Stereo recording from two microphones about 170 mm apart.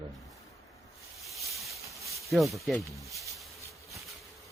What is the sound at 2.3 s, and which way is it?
Speech, centre (ahead or behind).